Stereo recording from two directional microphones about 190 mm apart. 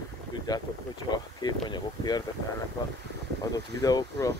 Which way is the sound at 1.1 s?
20° left (ahead or behind).